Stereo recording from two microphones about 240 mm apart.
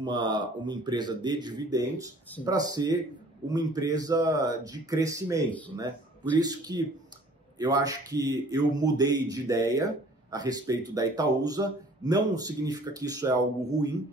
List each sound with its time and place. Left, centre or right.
0.0 s a man's voice: centre